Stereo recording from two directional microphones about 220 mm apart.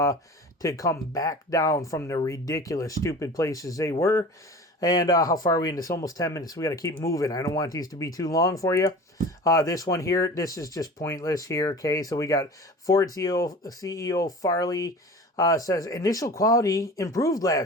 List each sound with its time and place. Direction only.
0.6 s speech: 15° left (ahead or behind)